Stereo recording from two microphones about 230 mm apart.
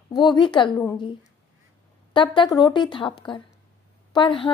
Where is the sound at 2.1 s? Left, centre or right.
Left.